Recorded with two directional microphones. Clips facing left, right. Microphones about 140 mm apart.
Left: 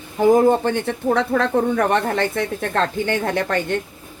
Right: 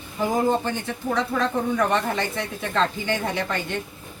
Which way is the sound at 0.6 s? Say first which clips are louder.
Left 7 dB; 65° left (ahead or behind).